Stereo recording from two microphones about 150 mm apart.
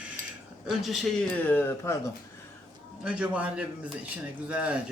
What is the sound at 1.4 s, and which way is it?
Speech, 15° left (ahead or behind).